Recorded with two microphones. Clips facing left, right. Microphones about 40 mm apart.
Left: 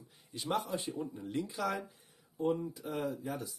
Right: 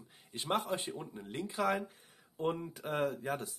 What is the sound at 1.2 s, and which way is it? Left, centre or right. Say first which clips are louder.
Speech: right 3 dB; right.